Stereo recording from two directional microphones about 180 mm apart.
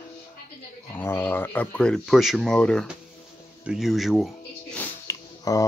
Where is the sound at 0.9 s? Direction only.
10° left (ahead or behind).